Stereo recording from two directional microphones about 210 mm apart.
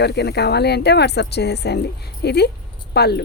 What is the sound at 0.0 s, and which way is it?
Speech, 50° left (ahead or behind).